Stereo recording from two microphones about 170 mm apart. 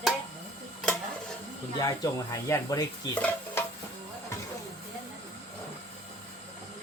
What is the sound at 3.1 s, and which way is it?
Stir, 10° left (ahead or behind).